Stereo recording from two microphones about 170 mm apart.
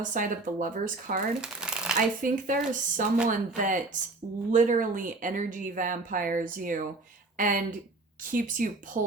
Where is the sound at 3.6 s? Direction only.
50° right (ahead or behind).